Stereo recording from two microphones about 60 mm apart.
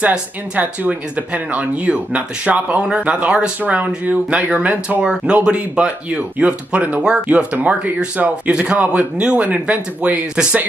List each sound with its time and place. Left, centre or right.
0.6 s speech: right